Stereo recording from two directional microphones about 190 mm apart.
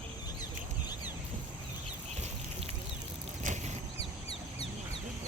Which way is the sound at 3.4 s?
40° right (ahead or behind).